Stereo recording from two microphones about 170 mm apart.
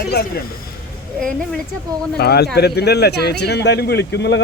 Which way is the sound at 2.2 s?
70° left (ahead or behind).